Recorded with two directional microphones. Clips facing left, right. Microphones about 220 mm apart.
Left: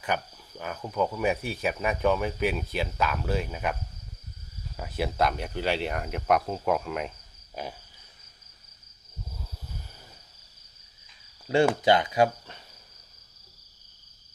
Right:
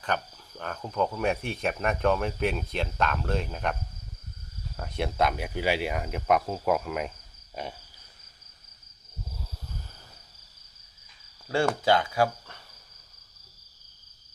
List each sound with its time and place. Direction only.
0.0 s speech: 10° left (ahead or behind)
4.8 s speech: 5° left (ahead or behind)
11.4 s speech: 20° left (ahead or behind)